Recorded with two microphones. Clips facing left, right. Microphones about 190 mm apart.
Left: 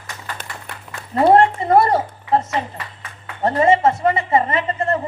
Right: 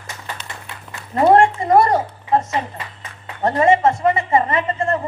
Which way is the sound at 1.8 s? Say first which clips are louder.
Even; 30° left (ahead or behind).